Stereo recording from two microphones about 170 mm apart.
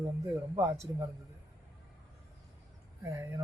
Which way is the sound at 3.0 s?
20° right (ahead or behind).